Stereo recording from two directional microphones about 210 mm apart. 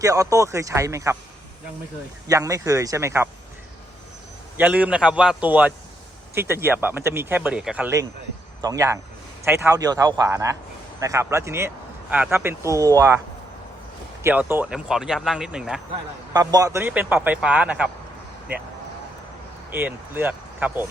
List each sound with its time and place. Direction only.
0.0 s speech: 15° right (ahead or behind)
2.2 s speech: 15° right (ahead or behind)
4.5 s speech: 5° right (ahead or behind)
16.3 s speech: 20° right (ahead or behind)
19.7 s speech: 10° right (ahead or behind)